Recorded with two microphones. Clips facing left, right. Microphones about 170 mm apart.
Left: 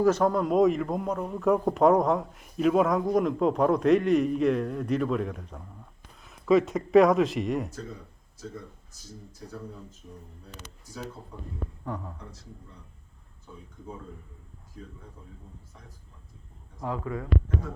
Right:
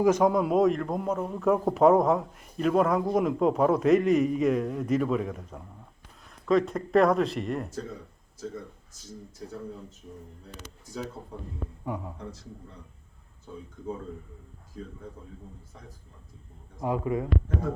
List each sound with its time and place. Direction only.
0.0 s a man's voice: 10° right (ahead or behind)
11.9 s speech: 10° right (ahead or behind)
16.8 s speech: 15° right (ahead or behind)